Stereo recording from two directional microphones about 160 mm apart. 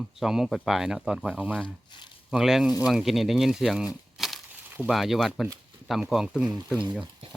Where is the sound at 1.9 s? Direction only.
30° left (ahead or behind).